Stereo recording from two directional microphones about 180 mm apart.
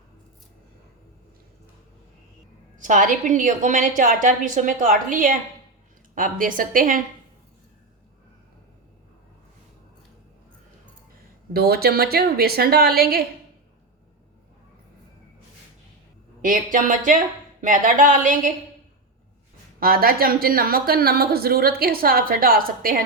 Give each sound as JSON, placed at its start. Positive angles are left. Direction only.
{"t": 2.7, "sound": "a woman's voice", "side_deg": -45}
{"t": 11.5, "sound": "a woman's voice", "side_deg": -60}
{"t": 16.4, "sound": "a woman's voice", "side_deg": -45}
{"t": 19.8, "sound": "a woman's voice", "side_deg": -55}